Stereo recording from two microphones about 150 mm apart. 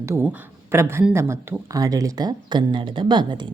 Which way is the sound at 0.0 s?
15° right (ahead or behind).